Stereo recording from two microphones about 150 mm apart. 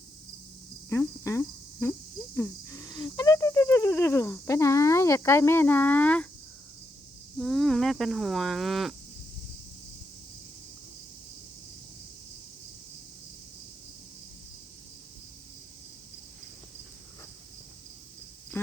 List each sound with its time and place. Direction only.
0.9 s cricket: 15° left (ahead or behind)
7.3 s speech: centre (ahead or behind)
18.5 s a sound: 15° left (ahead or behind)